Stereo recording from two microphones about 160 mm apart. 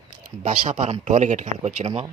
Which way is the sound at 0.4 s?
50° right (ahead or behind).